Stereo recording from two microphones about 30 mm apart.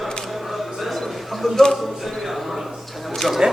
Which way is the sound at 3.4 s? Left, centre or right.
Right.